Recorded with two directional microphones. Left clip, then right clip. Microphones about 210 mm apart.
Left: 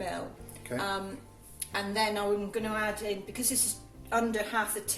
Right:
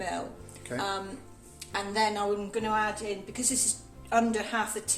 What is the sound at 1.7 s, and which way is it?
A woman's voice, 20° right (ahead or behind).